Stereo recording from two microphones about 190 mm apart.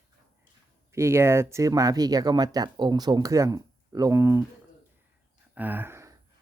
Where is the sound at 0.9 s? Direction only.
15° right (ahead or behind).